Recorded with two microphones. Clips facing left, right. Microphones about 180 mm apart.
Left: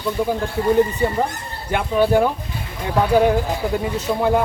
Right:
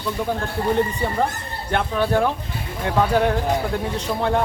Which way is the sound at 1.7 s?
10° left (ahead or behind).